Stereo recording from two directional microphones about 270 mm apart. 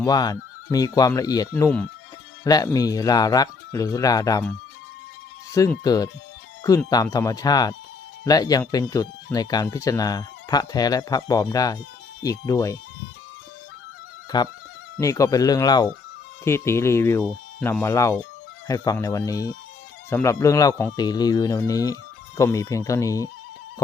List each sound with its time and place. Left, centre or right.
0.0 s speech: centre
5.5 s speech: centre
14.3 s speech: centre